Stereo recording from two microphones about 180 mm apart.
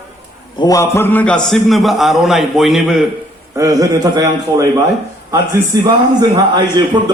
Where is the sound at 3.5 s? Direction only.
20° right (ahead or behind).